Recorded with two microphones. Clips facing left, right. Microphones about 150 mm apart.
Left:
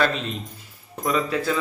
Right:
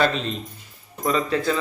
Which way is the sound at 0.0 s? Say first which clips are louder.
Right 1 dB; 5° left (ahead or behind).